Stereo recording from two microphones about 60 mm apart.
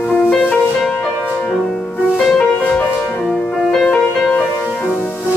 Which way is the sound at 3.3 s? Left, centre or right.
Centre.